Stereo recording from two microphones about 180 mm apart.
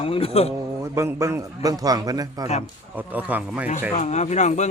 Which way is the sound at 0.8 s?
15° right (ahead or behind).